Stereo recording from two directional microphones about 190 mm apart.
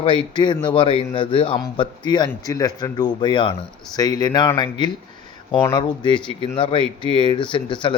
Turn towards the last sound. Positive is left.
turn(degrees=25)  # may be behind; listen again after turning